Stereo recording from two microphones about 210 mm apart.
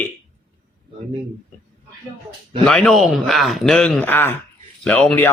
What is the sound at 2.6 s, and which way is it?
Speech, centre (ahead or behind).